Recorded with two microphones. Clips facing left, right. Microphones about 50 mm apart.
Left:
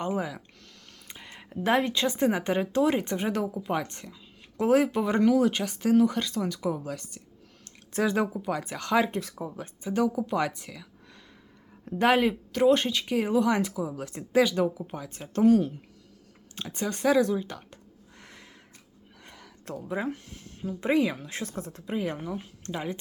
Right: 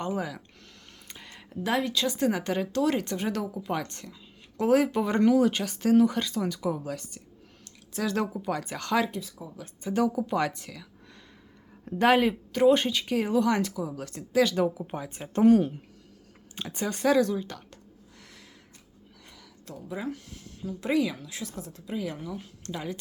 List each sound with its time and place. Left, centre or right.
0.0 s speech: centre
8.0 s speech: centre
9.0 s speech: left
9.8 s speech: centre
14.8 s speech: centre
15.4 s speech: right
16.6 s speech: centre
18.2 s a sound: left
19.2 s speech: left